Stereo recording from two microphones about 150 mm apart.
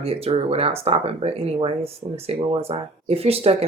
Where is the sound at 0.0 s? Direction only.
40° right (ahead or behind).